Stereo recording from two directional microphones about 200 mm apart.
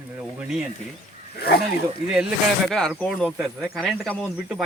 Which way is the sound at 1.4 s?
55° left (ahead or behind).